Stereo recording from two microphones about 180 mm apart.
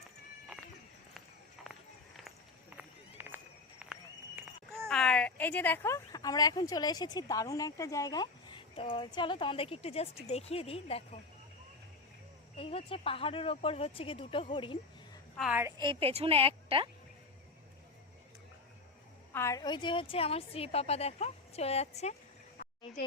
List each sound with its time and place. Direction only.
1.6 s run: centre (ahead or behind)
2.7 s run: 10° right (ahead or behind)
4.4 s a sound: 10° right (ahead or behind)
4.9 s a woman's voice: 5° left (ahead or behind); by 11.2 s 35° left (ahead or behind)
12.5 s a woman's voice: 30° left (ahead or behind)
15.4 s a woman's voice: 5° right (ahead or behind)
15.6 s speech: 25° right (ahead or behind)
19.3 s a woman's voice: 15° left (ahead or behind); by 22.1 s 35° left (ahead or behind)